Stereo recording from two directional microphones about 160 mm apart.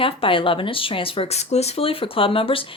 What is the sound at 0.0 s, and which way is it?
Speech, 35° left (ahead or behind).